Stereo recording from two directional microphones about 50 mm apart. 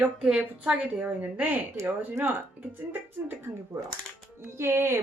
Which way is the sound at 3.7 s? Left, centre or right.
Right.